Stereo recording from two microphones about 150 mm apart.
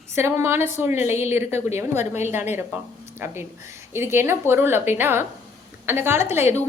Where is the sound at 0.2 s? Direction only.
20° right (ahead or behind).